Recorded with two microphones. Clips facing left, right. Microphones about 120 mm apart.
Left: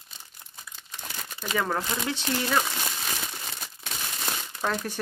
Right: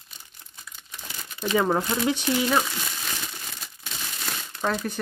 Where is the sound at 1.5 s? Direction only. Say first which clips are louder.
Right 5 dB; 15° right (ahead or behind).